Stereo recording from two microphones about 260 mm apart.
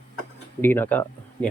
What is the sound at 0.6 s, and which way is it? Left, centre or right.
Speech, centre.